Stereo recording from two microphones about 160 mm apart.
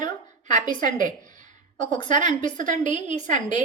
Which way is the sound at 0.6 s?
25° left (ahead or behind).